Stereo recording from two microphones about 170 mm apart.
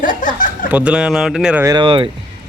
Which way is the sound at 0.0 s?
50° left (ahead or behind).